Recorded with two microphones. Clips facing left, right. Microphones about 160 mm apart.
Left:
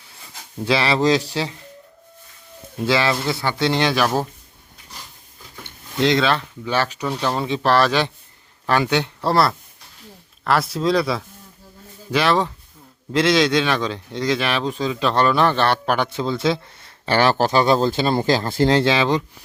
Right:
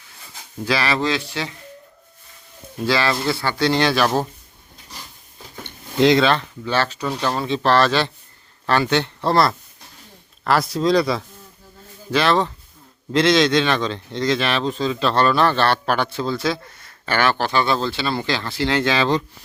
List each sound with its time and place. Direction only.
0.6 s speech: 25° left (ahead or behind)
2.8 s speech: 20° left (ahead or behind)
6.0 s speech: 5° right (ahead or behind)
6.2 s speech: 10° left (ahead or behind); by 18.8 s 45° left (ahead or behind)
18.8 s speech: 25° left (ahead or behind)